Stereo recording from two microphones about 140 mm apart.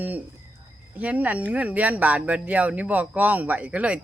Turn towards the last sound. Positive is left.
turn(degrees=-10)  # may be behind; listen again after turning